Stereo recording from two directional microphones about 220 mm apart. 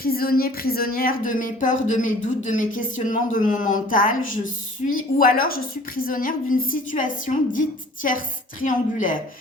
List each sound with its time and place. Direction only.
0.0 s speech: 40° left (ahead or behind)